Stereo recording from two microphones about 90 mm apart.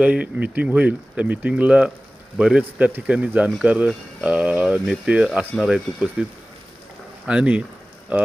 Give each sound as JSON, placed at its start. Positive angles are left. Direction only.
{"t": 0.0, "sound": "speech", "side_deg": -15}
{"t": 7.3, "sound": "speech", "side_deg": -15}